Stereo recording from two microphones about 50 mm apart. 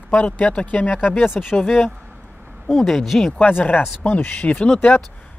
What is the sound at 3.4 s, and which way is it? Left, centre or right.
Speech, left.